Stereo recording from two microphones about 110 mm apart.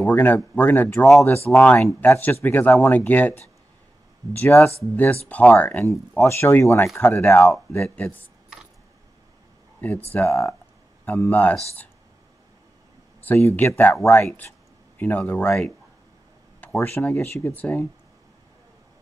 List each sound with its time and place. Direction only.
0.0 s speech: 15° left (ahead or behind)
5.9 s speech: 25° left (ahead or behind)
9.8 s speech: 15° left (ahead or behind)
13.2 s speech: 20° left (ahead or behind)
15.0 s speech: 15° left (ahead or behind)
16.7 s speech: 20° left (ahead or behind)